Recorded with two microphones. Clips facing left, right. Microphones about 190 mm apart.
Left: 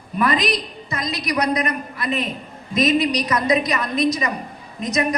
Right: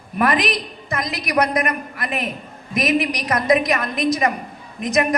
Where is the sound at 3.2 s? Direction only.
50° right (ahead or behind).